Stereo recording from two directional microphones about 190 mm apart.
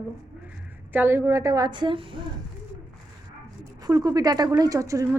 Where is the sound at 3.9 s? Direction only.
20° right (ahead or behind).